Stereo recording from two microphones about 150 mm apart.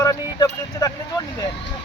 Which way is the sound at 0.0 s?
25° left (ahead or behind).